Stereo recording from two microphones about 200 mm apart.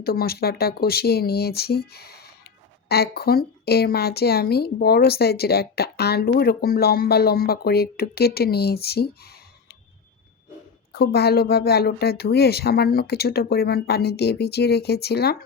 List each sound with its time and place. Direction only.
0.0 s speech: 50° left (ahead or behind)
10.9 s speech: 55° left (ahead or behind)